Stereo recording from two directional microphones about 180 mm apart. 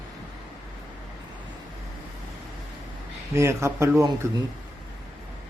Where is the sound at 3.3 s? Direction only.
15° right (ahead or behind).